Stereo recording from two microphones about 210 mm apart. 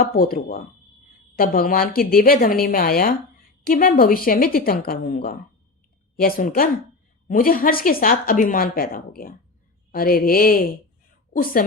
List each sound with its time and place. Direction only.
0.0 s a woman's voice: 45° left (ahead or behind)